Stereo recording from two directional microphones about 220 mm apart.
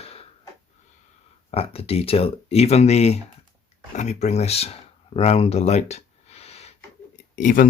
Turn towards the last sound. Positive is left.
turn(degrees=40)  # may be behind; listen again after turning